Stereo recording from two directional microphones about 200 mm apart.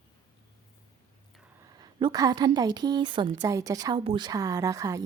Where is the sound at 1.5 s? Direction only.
20° right (ahead or behind).